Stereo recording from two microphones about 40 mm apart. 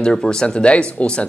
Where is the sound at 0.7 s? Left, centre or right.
Left.